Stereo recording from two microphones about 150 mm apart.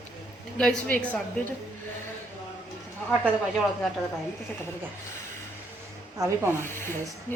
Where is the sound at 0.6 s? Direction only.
5° left (ahead or behind).